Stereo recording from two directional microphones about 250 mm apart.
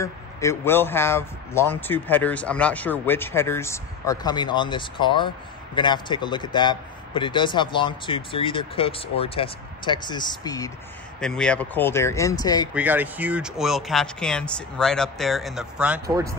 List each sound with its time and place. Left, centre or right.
0.0 s speech: centre
11.1 s speech: centre
12.7 s speech: centre